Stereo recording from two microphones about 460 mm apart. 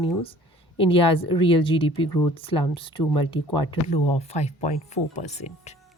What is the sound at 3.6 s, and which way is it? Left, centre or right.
Speech, left.